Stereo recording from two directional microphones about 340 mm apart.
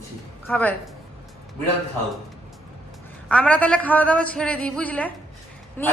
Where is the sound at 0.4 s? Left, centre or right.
Centre.